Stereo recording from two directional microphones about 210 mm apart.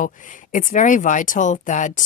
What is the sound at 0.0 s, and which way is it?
Speech, 40° left (ahead or behind).